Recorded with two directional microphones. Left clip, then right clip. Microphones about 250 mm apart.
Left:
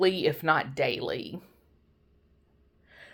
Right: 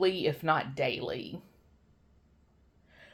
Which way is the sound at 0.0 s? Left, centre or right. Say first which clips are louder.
Left 3 dB; left.